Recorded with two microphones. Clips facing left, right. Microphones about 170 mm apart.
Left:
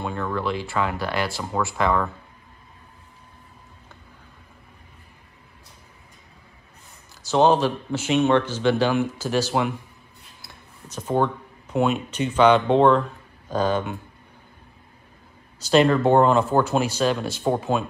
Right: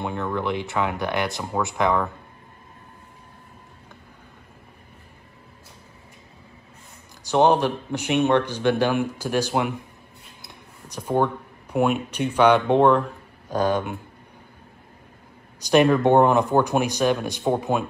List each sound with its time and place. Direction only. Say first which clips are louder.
0.0 s speech: even; 15° right (ahead or behind)
7.2 s a man's voice: even; 15° right (ahead or behind)
10.4 s a sound: even; 15° right (ahead or behind)
12.1 s a man's voice: left 2 dB; 10° right (ahead or behind)
15.6 s a man's voice: even; 15° right (ahead or behind)